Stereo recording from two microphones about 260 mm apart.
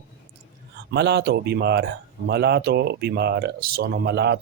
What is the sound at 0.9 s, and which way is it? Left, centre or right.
Speech, right.